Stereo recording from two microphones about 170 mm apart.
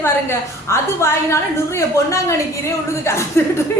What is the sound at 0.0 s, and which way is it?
A woman's voice, 15° left (ahead or behind).